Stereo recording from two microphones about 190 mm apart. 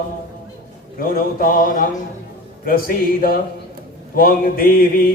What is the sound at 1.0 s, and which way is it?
Mantra, 50° left (ahead or behind).